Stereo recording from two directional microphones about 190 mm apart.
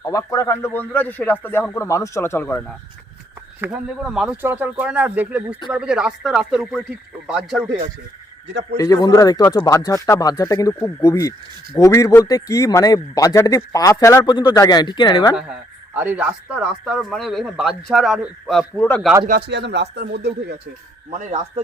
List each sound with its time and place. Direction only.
0.1 s a man's voice: 15° left (ahead or behind)
3.6 s a man's voice: 5° right (ahead or behind)
8.8 s a man's voice: 20° left (ahead or behind)
16.0 s a man's voice: 10° right (ahead or behind)
18.8 s a man's voice: 10° left (ahead or behind)
19.5 s speech: 65° right (ahead or behind)
21.1 s speech: 40° right (ahead or behind)